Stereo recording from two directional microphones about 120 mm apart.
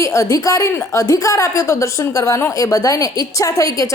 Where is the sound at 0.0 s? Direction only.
25° left (ahead or behind).